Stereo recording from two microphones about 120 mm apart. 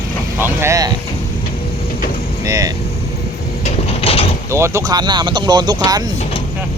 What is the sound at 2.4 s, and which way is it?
Speech, 30° right (ahead or behind).